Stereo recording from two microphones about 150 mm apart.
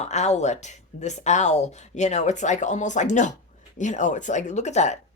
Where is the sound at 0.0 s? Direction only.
50° left (ahead or behind).